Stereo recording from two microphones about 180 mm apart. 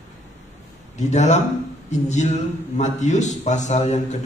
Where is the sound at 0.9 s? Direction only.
40° left (ahead or behind).